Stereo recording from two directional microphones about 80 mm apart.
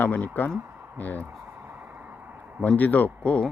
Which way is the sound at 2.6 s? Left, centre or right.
Centre.